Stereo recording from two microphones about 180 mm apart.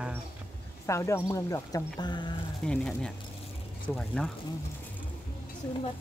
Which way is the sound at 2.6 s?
5° left (ahead or behind).